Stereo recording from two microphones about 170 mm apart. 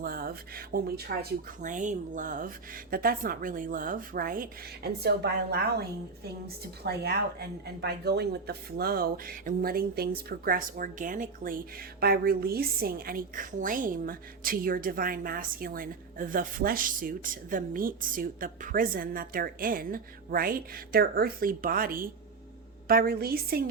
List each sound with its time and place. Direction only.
0.0 s speech: 60° right (ahead or behind)
6.8 s speech: 70° right (ahead or behind)